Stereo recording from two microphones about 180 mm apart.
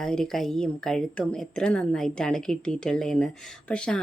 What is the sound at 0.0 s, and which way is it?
Speech, 5° left (ahead or behind).